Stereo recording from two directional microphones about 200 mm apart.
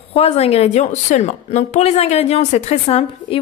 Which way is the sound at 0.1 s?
30° left (ahead or behind).